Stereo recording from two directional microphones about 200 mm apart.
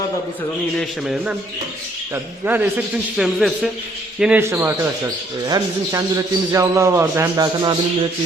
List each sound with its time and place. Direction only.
0.8 s a man's voice: centre (ahead or behind); by 7.8 s 20° right (ahead or behind)